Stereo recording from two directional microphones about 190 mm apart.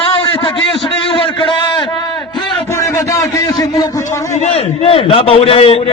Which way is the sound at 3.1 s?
20° left (ahead or behind).